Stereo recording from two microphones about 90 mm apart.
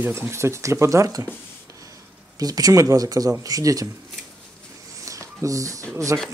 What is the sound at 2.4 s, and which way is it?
Speech, 45° right (ahead or behind).